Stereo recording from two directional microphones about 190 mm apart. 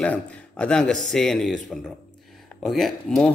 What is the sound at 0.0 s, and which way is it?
A man's voice, 5° left (ahead or behind).